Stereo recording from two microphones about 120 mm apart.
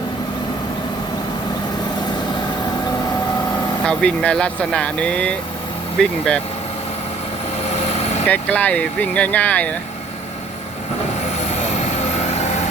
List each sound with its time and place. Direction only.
3.8 s speech: 10° left (ahead or behind)
7.7 s vehicle: 65° left (ahead or behind)
8.3 s speech: 10° left (ahead or behind)
11.4 s vehicle: 65° left (ahead or behind)